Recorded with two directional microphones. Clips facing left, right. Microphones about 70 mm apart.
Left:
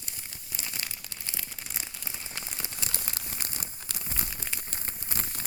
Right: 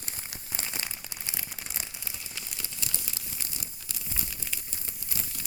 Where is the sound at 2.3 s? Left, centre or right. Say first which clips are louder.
Left 3 dB; left.